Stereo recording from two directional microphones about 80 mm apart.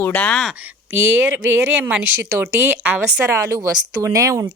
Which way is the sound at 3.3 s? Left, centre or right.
Right.